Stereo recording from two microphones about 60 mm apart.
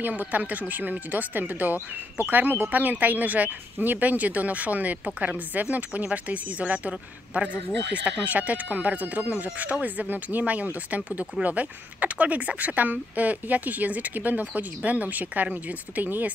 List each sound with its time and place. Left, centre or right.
0.0 s speech: right